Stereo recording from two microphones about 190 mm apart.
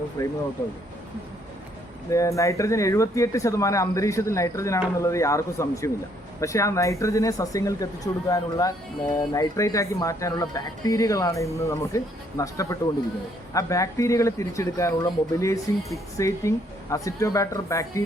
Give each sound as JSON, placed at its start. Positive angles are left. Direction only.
{"t": 0.2, "sound": "speech", "side_deg": 15}
{"t": 2.0, "sound": "speech", "side_deg": 15}